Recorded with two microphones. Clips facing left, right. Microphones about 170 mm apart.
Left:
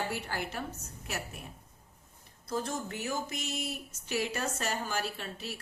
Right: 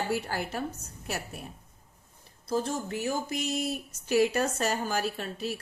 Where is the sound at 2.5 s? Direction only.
30° right (ahead or behind).